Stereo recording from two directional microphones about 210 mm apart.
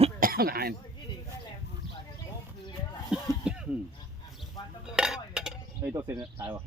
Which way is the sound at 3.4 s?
5° right (ahead or behind).